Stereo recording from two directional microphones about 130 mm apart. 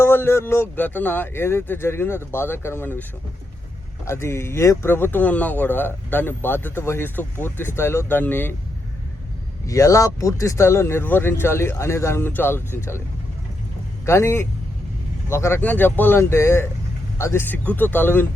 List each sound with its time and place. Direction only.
0.0 s speech: 20° left (ahead or behind)
4.0 s speech: 20° left (ahead or behind)
9.6 s speech: 25° left (ahead or behind)
14.0 s a man's voice: 20° left (ahead or behind)